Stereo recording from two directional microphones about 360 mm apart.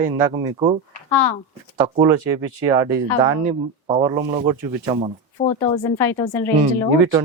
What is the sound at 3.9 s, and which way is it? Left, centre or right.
Speech, centre.